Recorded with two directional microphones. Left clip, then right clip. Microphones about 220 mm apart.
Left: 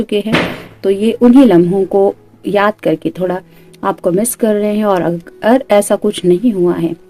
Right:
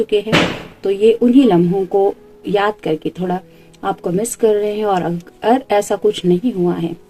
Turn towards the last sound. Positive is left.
turn(degrees=50)  # may be behind; listen again after turning